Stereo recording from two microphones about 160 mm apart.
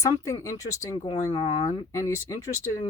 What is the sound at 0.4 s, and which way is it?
Speech, 20° left (ahead or behind).